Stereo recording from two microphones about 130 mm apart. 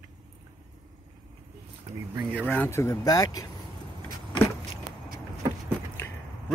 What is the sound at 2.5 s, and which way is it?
Speech, 15° left (ahead or behind).